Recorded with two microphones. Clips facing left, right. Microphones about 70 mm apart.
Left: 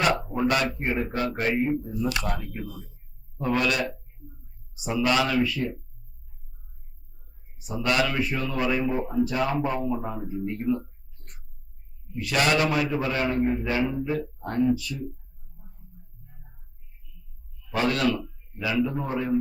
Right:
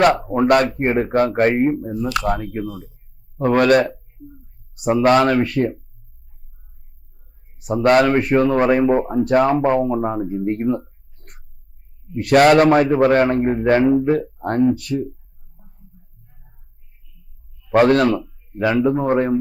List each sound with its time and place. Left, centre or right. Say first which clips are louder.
0.0 s a man's voice: right 9 dB; right
3.3 s a man's voice: right 11 dB; right
7.6 s a man's voice: right 11 dB; right
17.7 s a man's voice: right 11 dB; right